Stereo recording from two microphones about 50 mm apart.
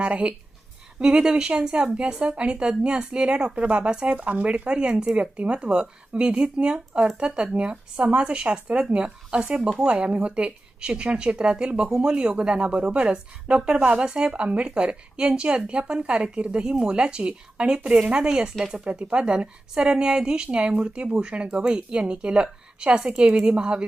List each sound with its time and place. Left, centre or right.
0.0 s a woman's voice: right
9.3 s a woman's voice: centre